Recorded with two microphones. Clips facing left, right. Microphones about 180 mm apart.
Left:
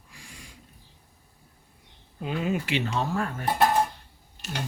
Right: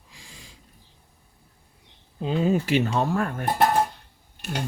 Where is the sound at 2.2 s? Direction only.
30° right (ahead or behind); by 3.6 s 50° right (ahead or behind).